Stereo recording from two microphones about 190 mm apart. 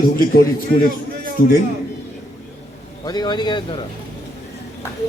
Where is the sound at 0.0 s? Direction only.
50° left (ahead or behind).